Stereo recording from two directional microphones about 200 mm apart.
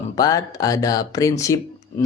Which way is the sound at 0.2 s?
20° left (ahead or behind).